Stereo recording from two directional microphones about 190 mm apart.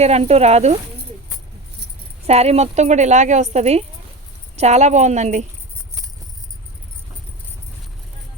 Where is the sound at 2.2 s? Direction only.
35° right (ahead or behind).